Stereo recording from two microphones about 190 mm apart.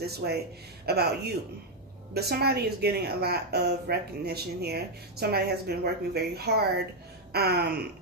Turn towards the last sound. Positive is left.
turn(degrees=-55)  # may be behind; listen again after turning